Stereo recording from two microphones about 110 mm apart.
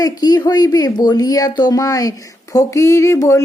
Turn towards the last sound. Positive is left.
turn(degrees=25)  # may be behind; listen again after turning